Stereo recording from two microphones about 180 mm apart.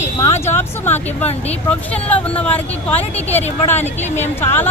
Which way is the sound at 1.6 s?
5° left (ahead or behind).